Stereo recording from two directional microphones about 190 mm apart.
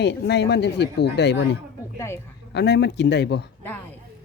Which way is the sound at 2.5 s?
60° left (ahead or behind).